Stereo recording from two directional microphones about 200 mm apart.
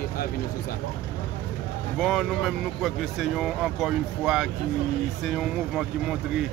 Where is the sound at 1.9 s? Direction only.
Centre (ahead or behind).